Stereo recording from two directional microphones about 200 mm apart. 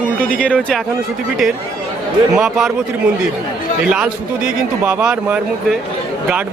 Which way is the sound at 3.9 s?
5° right (ahead or behind).